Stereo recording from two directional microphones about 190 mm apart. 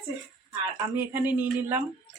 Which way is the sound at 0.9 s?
10° right (ahead or behind).